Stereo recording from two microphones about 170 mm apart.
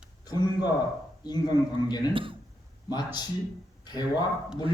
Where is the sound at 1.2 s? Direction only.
25° left (ahead or behind).